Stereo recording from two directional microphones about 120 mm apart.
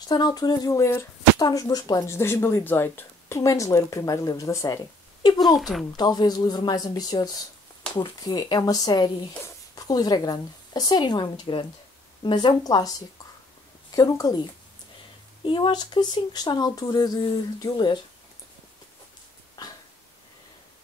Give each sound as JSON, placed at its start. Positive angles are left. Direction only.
{"t": 0.1, "sound": "speech", "side_deg": 35}
{"t": 5.6, "sound": "speech", "side_deg": 0}
{"t": 5.9, "sound": "speech", "side_deg": 35}
{"t": 13.9, "sound": "speech", "side_deg": 30}